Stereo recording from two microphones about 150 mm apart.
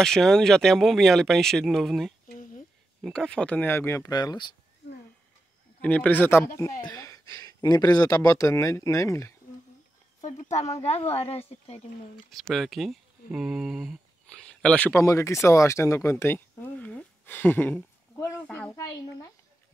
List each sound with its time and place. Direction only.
0.0 s speech: 5° left (ahead or behind)
2.2 s a sound: 65° left (ahead or behind)
3.0 s speech: 5° left (ahead or behind); by 4.5 s 25° left (ahead or behind)
5.8 s speech: 10° left (ahead or behind)
10.2 s speech: 50° left (ahead or behind)
12.3 s speech: centre (ahead or behind)
15.0 s speech: 20° left (ahead or behind)
18.8 s speech: 20° left (ahead or behind)